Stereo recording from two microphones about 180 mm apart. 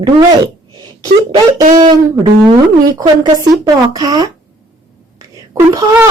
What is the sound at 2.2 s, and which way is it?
Speech, 25° right (ahead or behind).